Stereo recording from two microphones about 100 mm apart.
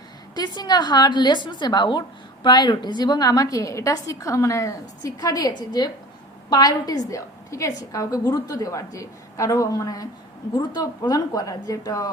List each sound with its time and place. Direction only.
0.3 s a woman's voice: 45° left (ahead or behind)
10.5 s a woman's voice: 50° left (ahead or behind)